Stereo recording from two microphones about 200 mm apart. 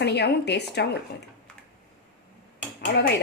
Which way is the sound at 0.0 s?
55° left (ahead or behind).